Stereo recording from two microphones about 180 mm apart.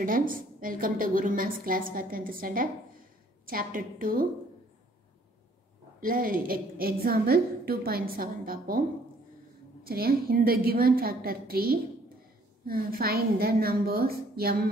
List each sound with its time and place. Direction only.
0.0 s a woman's voice: 50° right (ahead or behind)
5.9 s a woman's voice: 50° right (ahead or behind)
9.8 s a woman's voice: 55° right (ahead or behind)